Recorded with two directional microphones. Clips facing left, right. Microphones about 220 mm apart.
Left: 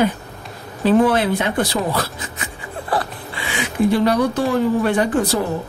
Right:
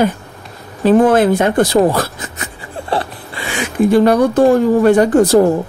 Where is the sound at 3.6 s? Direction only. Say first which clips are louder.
Right 5 dB; 50° right (ahead or behind).